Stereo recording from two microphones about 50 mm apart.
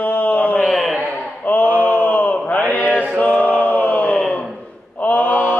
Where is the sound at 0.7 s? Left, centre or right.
Centre.